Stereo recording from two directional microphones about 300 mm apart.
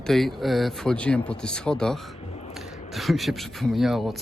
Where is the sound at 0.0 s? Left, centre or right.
Centre.